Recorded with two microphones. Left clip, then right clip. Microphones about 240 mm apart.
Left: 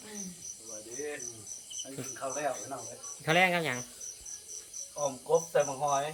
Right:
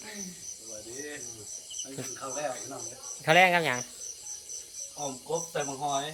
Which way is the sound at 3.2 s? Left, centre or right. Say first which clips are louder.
Right 5 dB; centre.